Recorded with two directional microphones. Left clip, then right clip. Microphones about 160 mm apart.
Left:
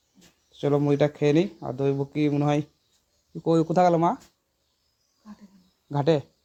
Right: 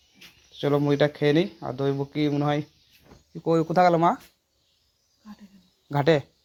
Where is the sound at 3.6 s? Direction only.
10° left (ahead or behind).